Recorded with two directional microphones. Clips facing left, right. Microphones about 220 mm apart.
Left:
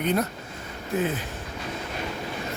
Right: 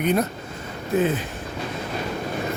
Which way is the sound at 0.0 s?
15° right (ahead or behind).